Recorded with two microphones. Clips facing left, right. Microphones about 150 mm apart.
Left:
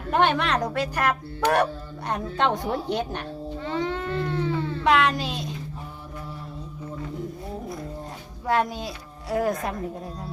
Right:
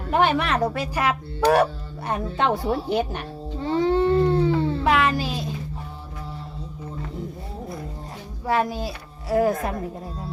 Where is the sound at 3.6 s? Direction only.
30° right (ahead or behind).